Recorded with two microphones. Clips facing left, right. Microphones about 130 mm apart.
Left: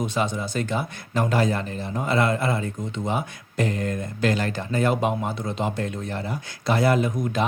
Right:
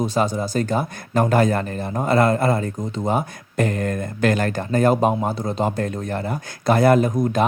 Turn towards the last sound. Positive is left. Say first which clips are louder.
# right 5 dB
turn(degrees=-40)  # may be behind; listen again after turning